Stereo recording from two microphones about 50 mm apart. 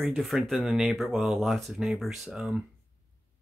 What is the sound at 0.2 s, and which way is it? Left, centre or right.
Speech, centre.